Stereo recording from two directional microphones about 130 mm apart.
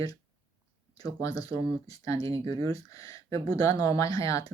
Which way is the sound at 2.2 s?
40° right (ahead or behind).